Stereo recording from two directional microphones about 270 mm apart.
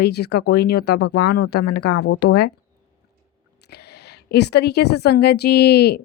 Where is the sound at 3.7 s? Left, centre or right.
Left.